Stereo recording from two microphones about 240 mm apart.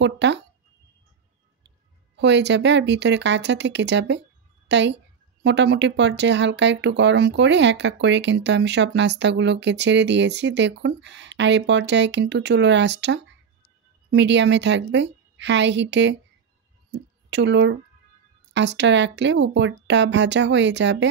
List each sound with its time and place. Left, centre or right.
0.0 s speech: right
2.1 s a woman's voice: right
17.3 s speech: right